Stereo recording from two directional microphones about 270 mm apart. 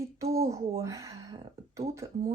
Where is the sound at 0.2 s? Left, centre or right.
Centre.